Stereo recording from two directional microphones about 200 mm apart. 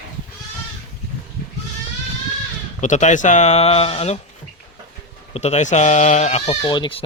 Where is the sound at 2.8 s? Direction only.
35° left (ahead or behind).